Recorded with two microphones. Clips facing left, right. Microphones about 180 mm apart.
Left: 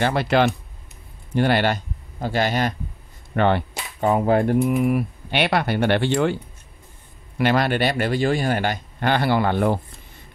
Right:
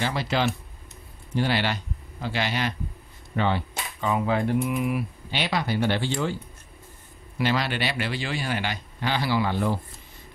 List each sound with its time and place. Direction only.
0.0 s speech: 60° left (ahead or behind)
3.3 s speech: 60° left (ahead or behind)